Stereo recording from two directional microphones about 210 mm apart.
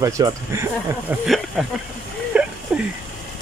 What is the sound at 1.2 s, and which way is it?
Speech, centre (ahead or behind).